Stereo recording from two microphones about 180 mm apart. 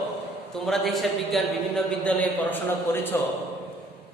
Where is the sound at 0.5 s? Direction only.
Centre (ahead or behind).